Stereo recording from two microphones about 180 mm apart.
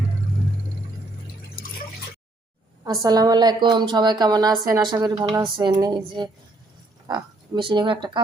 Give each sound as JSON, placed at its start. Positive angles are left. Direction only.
{"t": 2.8, "sound": "a woman's voice", "side_deg": -20}